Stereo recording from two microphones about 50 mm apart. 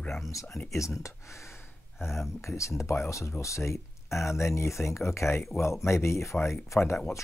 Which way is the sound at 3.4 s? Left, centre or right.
Left.